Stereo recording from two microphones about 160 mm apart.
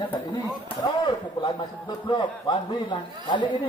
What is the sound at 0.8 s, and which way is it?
Speech, 30° left (ahead or behind).